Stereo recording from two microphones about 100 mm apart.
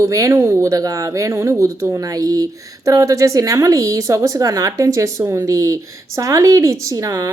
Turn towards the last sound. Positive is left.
turn(degrees=-35)  # may be behind; listen again after turning